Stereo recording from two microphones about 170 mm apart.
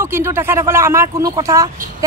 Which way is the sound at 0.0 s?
15° right (ahead or behind).